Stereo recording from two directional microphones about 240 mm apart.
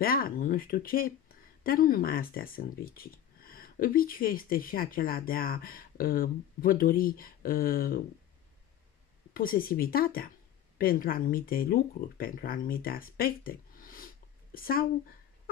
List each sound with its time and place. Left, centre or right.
0.0 s speech: left
9.3 s speech: left